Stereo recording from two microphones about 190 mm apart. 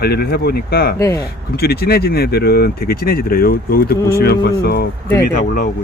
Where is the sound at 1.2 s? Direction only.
55° left (ahead or behind).